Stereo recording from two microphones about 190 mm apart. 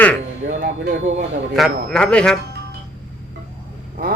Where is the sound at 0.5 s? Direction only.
55° right (ahead or behind).